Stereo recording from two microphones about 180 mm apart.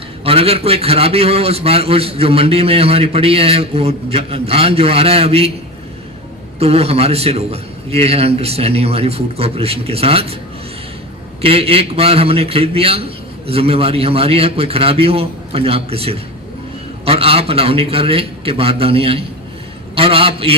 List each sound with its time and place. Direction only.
0.3 s a man's voice: 30° right (ahead or behind)
6.6 s a man's voice: 35° right (ahead or behind)
11.4 s a man's voice: 30° right (ahead or behind)